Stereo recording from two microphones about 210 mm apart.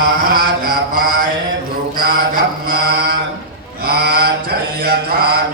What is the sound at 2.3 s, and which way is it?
Mantra, 45° right (ahead or behind).